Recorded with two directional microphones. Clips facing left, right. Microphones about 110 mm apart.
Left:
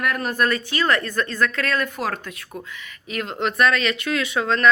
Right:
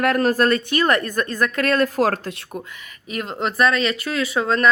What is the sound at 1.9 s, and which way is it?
Speech, 40° right (ahead or behind).